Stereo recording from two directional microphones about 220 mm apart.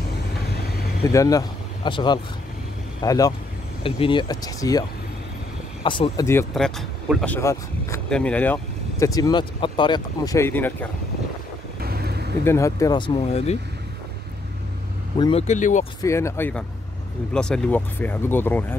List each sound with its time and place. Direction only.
1.0 s speech: 15° left (ahead or behind)
5.9 s speech: 20° left (ahead or behind)
6.5 s speech: centre (ahead or behind)
9.0 s speech: 15° left (ahead or behind)
11.8 s vehicle: 45° right (ahead or behind)
12.4 s speech: 15° left (ahead or behind); by 13.6 s 30° left (ahead or behind)
15.1 s speech: 20° left (ahead or behind)
15.4 s speech: 35° left (ahead or behind)
16.0 s speech: 15° left (ahead or behind)